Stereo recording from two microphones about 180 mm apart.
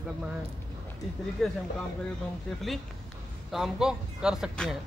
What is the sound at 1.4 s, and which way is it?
Speech, centre (ahead or behind).